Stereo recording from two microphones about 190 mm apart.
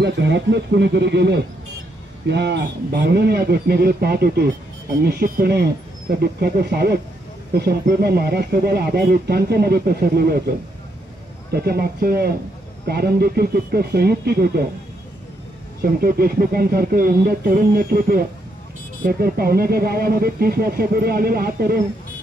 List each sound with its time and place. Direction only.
0.0 s speech: 65° right (ahead or behind)
11.5 s speech: 55° right (ahead or behind)
15.8 s speech: 50° right (ahead or behind)